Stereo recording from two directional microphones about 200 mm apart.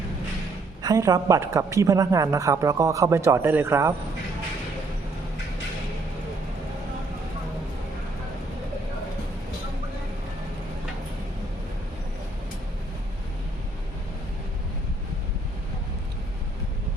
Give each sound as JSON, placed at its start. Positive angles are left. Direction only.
{"t": 0.8, "sound": "a woman's voice", "side_deg": -15}